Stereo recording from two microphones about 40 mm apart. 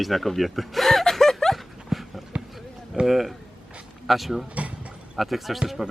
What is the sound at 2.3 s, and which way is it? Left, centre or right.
Basketball bounce, right.